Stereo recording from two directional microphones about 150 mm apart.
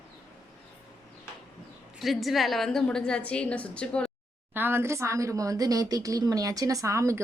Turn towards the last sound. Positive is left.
turn(degrees=-20)  # may be behind; listen again after turning